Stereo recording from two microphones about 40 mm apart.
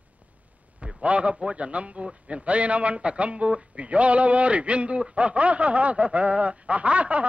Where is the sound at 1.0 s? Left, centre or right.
Right.